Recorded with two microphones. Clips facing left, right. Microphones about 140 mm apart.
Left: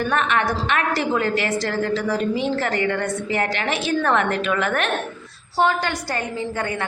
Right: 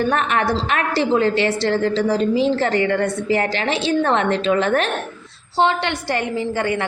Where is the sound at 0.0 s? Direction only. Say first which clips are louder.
Right 2 dB; 35° right (ahead or behind).